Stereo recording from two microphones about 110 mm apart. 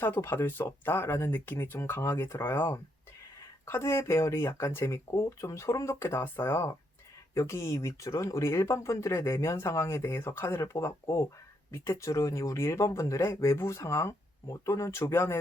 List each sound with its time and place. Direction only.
0.0 s speech: 20° left (ahead or behind)